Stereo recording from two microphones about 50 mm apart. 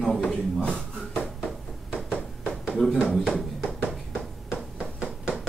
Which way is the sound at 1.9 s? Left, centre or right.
Centre.